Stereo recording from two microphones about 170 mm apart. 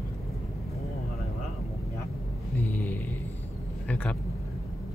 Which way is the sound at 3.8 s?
10° left (ahead or behind).